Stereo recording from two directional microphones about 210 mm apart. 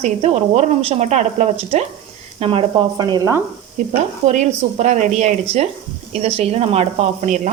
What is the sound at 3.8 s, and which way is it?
A woman's voice, 35° right (ahead or behind).